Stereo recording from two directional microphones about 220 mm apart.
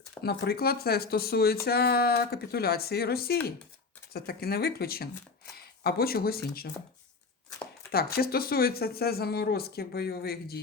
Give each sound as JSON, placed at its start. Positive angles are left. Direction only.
{"t": 0.2, "sound": "speech", "side_deg": 45}
{"t": 7.9, "sound": "speech", "side_deg": 45}